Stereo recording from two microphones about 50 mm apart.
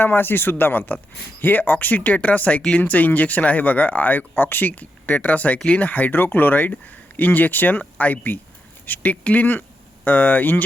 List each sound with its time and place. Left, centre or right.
0.0 s speech: left